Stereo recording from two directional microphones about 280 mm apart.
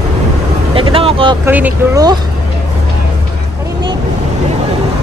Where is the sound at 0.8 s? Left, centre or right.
Centre.